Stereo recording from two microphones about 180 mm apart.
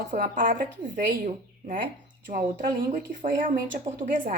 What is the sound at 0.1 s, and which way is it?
Speech, 50° right (ahead or behind).